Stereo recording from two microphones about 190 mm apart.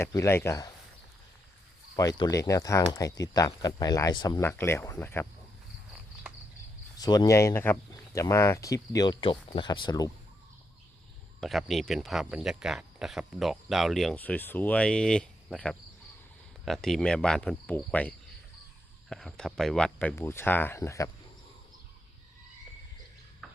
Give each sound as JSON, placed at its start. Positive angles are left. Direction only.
{"t": 0.0, "sound": "speech", "side_deg": 15}
{"t": 2.0, "sound": "speech", "side_deg": 20}
{"t": 7.0, "sound": "speech", "side_deg": 20}
{"t": 11.3, "sound": "speech", "side_deg": 0}